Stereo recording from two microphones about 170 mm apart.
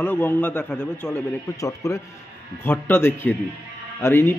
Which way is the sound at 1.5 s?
20° left (ahead or behind).